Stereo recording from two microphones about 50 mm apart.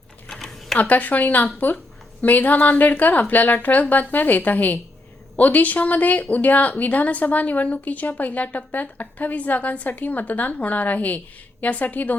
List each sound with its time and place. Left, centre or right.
0.3 s typing: centre
0.8 s a woman's voice: left